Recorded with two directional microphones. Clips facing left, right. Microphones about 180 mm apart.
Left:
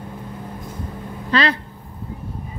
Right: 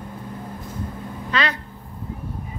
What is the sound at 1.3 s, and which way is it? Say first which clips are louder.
Speech: left 5 dB; 30° left (ahead or behind).